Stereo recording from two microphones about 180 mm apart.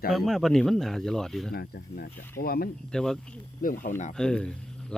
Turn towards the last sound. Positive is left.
turn(degrees=5)  # may be behind; listen again after turning